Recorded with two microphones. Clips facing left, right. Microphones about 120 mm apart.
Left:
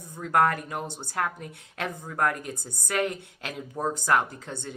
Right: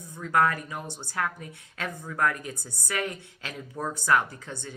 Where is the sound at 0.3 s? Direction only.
45° left (ahead or behind).